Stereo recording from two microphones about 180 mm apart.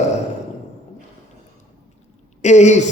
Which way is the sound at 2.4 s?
40° left (ahead or behind).